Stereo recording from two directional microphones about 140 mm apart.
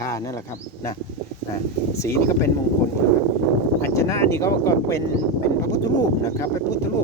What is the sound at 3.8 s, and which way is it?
Speech, 15° left (ahead or behind).